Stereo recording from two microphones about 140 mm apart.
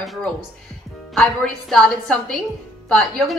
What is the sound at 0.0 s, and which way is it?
A woman's voice, centre (ahead or behind).